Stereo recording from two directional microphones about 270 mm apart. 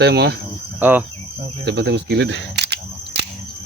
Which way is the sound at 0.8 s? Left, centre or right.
Centre.